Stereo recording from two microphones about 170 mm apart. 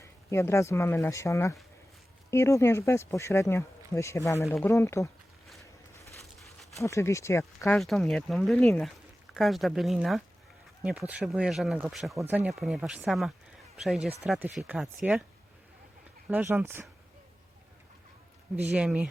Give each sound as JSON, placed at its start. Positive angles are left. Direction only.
{"t": 0.3, "sound": "speech", "side_deg": 15}
{"t": 6.1, "sound": "a sound", "side_deg": 0}
{"t": 6.7, "sound": "speech", "side_deg": 15}
{"t": 7.8, "sound": "speech", "side_deg": 0}
{"t": 12.1, "sound": "speech", "side_deg": -15}
{"t": 12.5, "sound": "speech", "side_deg": 0}
{"t": 16.3, "sound": "speech", "side_deg": -10}
{"t": 18.5, "sound": "speech", "side_deg": -10}